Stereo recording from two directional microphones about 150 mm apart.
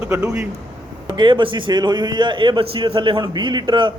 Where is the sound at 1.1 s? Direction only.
30° right (ahead or behind).